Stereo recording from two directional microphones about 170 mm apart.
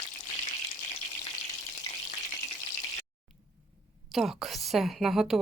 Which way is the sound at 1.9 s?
20° left (ahead or behind).